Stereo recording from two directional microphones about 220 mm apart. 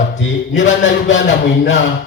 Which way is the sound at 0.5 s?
35° left (ahead or behind).